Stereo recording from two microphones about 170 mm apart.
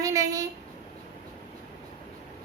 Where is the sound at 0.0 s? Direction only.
20° right (ahead or behind).